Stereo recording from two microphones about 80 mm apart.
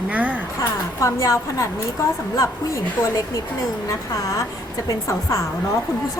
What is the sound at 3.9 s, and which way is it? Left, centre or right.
Speech, left.